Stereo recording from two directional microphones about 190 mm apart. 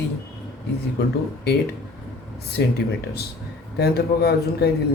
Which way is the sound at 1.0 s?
55° left (ahead or behind).